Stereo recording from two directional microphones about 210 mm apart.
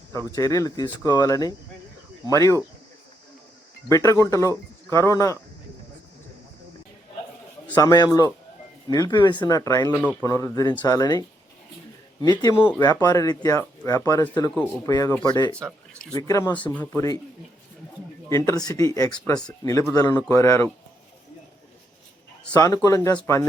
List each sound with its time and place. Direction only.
0.3 s speech: 15° left (ahead or behind)
3.8 s speech: 15° left (ahead or behind)
7.7 s speech: 15° left (ahead or behind)
18.3 s speech: 15° left (ahead or behind)
22.5 s speech: 15° left (ahead or behind)